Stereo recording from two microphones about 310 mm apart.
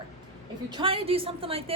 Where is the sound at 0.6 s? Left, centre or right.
Centre.